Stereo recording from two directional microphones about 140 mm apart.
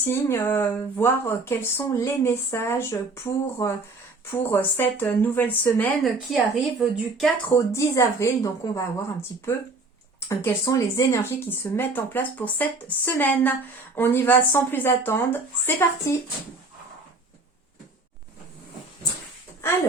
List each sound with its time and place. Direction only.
0.1 s speech: 15° left (ahead or behind)
6.0 s speech: centre (ahead or behind)
7.5 s speech: 20° left (ahead or behind)